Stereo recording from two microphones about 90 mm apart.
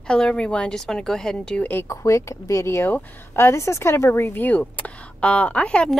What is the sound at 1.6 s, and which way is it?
Speech, 20° left (ahead or behind).